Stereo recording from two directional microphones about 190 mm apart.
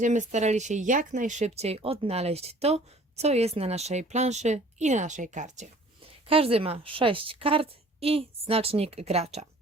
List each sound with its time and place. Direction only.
0.0 s speech: 40° right (ahead or behind)
6.2 s a woman's voice: 30° right (ahead or behind)